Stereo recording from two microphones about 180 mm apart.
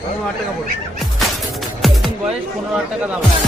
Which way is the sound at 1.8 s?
Centre (ahead or behind).